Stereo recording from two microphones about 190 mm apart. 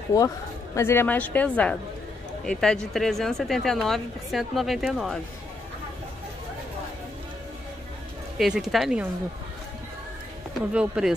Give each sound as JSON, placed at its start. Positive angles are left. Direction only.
{"t": 0.7, "sound": "a woman's voice", "side_deg": 10}
{"t": 8.4, "sound": "speech", "side_deg": 0}
{"t": 10.7, "sound": "speech", "side_deg": -5}